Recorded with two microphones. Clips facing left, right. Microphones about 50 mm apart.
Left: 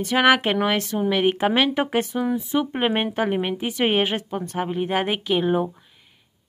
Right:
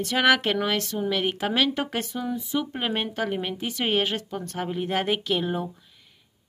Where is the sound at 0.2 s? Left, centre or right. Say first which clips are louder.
Left 3 dB; left.